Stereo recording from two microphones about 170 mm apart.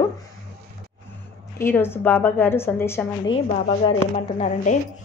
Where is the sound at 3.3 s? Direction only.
30° left (ahead or behind).